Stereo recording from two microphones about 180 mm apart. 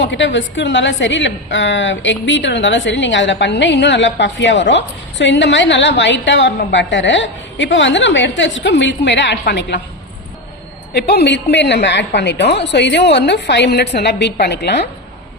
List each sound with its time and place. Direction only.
0.0 s a woman's voice: 90° left
10.9 s a woman's voice: 65° left (ahead or behind)